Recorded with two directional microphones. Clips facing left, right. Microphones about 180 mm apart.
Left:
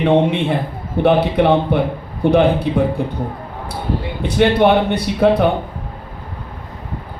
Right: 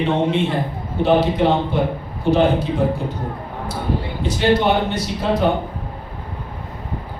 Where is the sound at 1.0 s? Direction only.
60° left (ahead or behind).